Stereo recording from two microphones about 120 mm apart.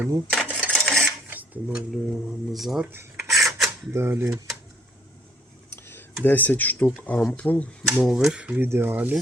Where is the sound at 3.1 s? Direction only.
Centre (ahead or behind).